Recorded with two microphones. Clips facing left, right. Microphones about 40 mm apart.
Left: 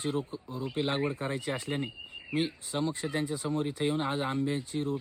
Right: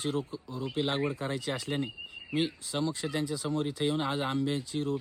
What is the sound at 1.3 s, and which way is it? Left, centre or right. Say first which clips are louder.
Speech: even; right.